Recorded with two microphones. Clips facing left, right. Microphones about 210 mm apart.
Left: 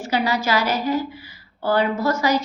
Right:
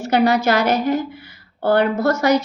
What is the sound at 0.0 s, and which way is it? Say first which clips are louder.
A woman's voice: right 6 dB; 60° right (ahead or behind).